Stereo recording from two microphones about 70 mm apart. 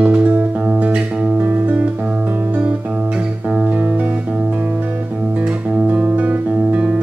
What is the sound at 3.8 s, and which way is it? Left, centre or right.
Guitar, right.